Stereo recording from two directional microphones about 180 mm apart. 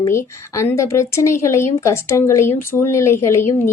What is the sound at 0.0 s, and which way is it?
A woman's voice, 15° left (ahead or behind).